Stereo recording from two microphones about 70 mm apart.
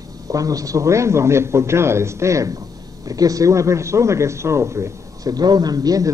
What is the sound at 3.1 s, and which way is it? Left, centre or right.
A man's voice, right.